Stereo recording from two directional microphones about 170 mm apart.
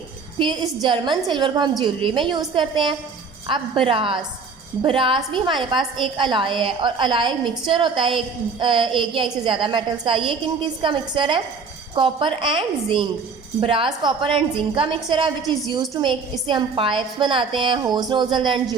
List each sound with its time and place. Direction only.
0.3 s a woman's voice: 25° right (ahead or behind)